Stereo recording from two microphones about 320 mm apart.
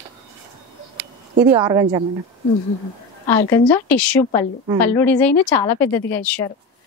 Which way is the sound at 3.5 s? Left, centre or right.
Centre.